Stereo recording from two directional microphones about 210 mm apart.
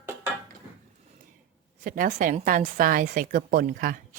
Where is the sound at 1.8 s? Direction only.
40° right (ahead or behind).